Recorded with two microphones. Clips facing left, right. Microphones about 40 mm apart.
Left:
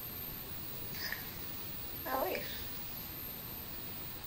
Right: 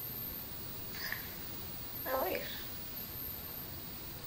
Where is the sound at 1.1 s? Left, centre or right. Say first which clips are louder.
Even; centre.